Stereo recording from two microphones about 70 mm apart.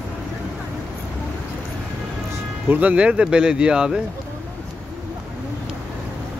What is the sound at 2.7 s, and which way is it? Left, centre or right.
Speech, right.